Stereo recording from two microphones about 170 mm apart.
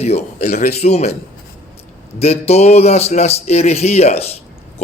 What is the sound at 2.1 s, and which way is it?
A man's voice, 40° left (ahead or behind).